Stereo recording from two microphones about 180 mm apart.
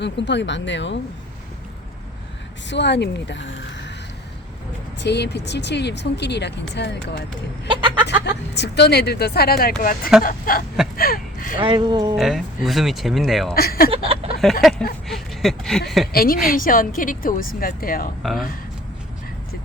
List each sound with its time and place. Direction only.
0.0 s speech: 75° left (ahead or behind)
2.6 s speech: 70° left (ahead or behind)
4.9 s speech: 70° left (ahead or behind)
7.7 s a sound: 25° right (ahead or behind)
8.2 s a woman's voice: 70° left (ahead or behind)
11.5 s speech: 25° right (ahead or behind)
12.1 s speech: centre (ahead or behind)
13.5 s speech: 55° left (ahead or behind)
13.9 s speech: 35° right (ahead or behind)
14.6 s speech: centre (ahead or behind)
16.1 s a woman's voice: 55° left (ahead or behind)
18.2 s speech: centre (ahead or behind)